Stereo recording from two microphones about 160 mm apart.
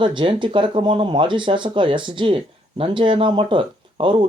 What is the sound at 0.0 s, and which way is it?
Speech, 30° right (ahead or behind).